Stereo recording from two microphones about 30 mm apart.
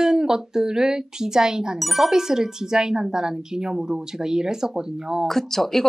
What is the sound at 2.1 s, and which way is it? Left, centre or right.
Speech, centre.